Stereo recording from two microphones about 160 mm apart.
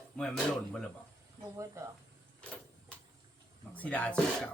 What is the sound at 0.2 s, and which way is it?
Speech, 5° left (ahead or behind).